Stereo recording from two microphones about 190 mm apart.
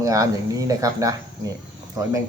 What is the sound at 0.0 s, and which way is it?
Speech, 15° right (ahead or behind).